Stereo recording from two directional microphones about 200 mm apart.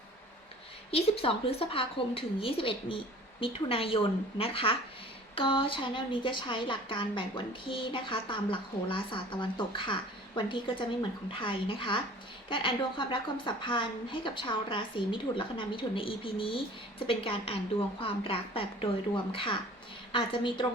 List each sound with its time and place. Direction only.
0.9 s a woman's voice: 30° left (ahead or behind)